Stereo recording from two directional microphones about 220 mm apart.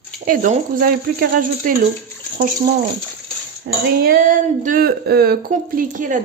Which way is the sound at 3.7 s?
45° right (ahead or behind).